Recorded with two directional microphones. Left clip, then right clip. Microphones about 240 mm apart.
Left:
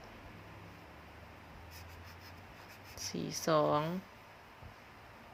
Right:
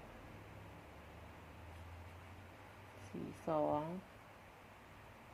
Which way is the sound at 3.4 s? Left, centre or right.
Left.